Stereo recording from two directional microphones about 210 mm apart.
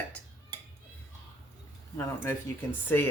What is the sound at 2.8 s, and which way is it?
Speech, 10° left (ahead or behind).